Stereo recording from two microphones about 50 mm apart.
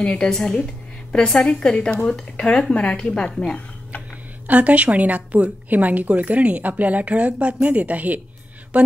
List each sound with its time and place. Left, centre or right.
0.0 s a woman's voice: centre
0.7 s a sound: centre
1.4 s a woman's voice: centre
4.5 s a woman's voice: right